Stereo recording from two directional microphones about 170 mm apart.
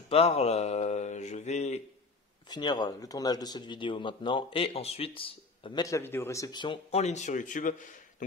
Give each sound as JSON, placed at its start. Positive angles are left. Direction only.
{"t": 0.1, "sound": "mantra", "side_deg": 35}
{"t": 2.5, "sound": "speech", "side_deg": 25}
{"t": 5.9, "sound": "speech", "side_deg": 15}